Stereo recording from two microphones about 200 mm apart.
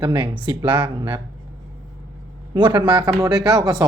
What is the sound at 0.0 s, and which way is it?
Speech, 25° right (ahead or behind).